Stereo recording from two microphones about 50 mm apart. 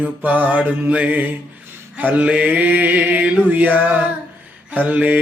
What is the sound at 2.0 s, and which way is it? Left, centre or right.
Mantra, right.